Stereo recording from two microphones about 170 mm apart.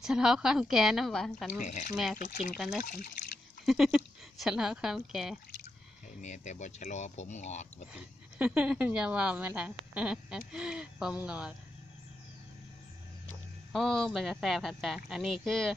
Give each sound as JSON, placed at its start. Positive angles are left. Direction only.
{"t": 0.0, "sound": "speech", "side_deg": -5}
{"t": 1.6, "sound": "speech", "side_deg": 45}
{"t": 2.5, "sound": "speech", "side_deg": 0}
{"t": 6.2, "sound": "speech", "side_deg": 45}
{"t": 7.9, "sound": "speech", "side_deg": -5}
{"t": 13.7, "sound": "speech", "side_deg": 5}